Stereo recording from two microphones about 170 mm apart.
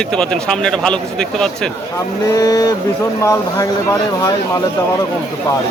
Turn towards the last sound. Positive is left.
turn(degrees=20)  # may be behind; listen again after turning